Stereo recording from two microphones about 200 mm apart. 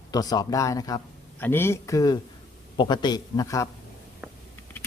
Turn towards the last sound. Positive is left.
turn(degrees=15)  # may be behind; listen again after turning